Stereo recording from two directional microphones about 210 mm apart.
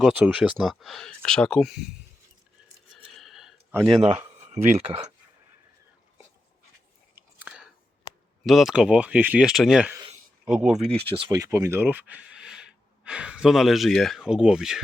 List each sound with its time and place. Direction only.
0.0 s speech: 5° right (ahead or behind)
2.9 s a sound: centre (ahead or behind)
4.4 s speech: 30° right (ahead or behind)
7.2 s chewing: 5° right (ahead or behind)
8.4 s speech: centre (ahead or behind)
10.8 s speech: 25° right (ahead or behind); by 14.8 s 5° right (ahead or behind)